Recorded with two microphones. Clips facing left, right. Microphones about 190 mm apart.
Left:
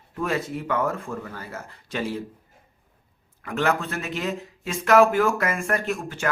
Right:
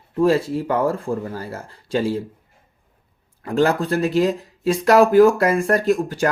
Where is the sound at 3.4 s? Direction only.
35° right (ahead or behind).